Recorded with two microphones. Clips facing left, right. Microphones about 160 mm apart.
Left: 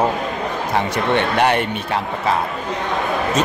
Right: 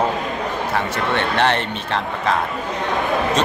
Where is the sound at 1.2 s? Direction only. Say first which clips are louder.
Left 1 dB; 10° left (ahead or behind).